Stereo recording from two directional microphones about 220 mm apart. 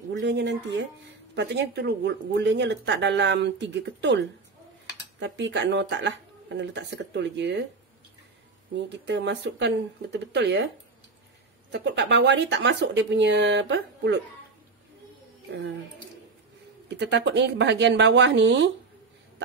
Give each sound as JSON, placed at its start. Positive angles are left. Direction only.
{"t": 0.1, "sound": "speech", "side_deg": -50}
{"t": 8.8, "sound": "speech", "side_deg": -50}
{"t": 11.7, "sound": "speech", "side_deg": -50}
{"t": 17.0, "sound": "speech", "side_deg": -55}